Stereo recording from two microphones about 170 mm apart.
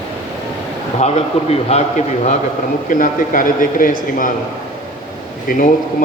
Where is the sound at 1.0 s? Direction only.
40° left (ahead or behind).